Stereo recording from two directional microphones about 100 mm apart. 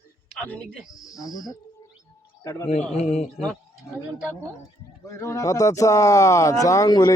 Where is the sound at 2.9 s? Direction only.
90° left.